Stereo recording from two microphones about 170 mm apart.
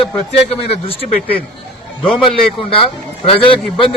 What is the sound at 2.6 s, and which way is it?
Speech, 30° left (ahead or behind).